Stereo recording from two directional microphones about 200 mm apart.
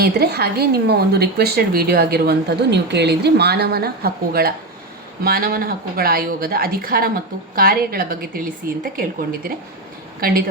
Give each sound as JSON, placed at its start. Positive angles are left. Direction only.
{"t": 0.0, "sound": "a woman's voice", "side_deg": -55}